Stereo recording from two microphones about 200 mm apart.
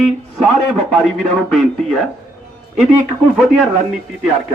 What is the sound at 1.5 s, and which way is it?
Speech, centre (ahead or behind).